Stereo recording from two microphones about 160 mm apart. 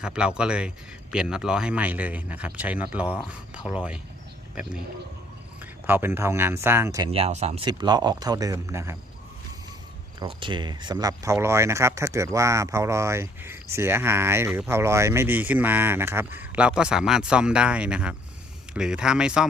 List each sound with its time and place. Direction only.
0.0 s speech: 5° right (ahead or behind)
5.8 s speech: 15° right (ahead or behind)
7.1 s speech: 40° right (ahead or behind)
7.7 s speech: 25° right (ahead or behind)
10.2 s speech: 30° right (ahead or behind); by 19.5 s 5° right (ahead or behind)